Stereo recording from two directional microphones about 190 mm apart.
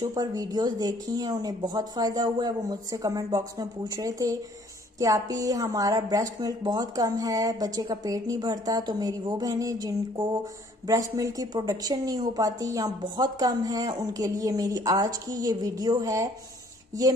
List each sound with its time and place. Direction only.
0.0 s a woman's voice: 20° right (ahead or behind)